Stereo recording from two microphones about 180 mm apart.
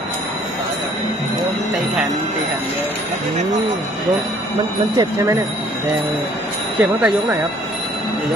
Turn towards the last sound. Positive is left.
turn(degrees=0)  # may be behind; listen again after turning